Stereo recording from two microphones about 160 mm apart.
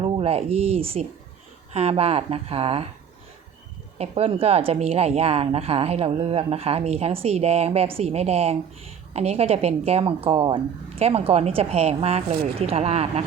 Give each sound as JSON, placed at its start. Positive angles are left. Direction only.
{"t": 0.0, "sound": "speech", "side_deg": -40}
{"t": 3.9, "sound": "speech", "side_deg": -40}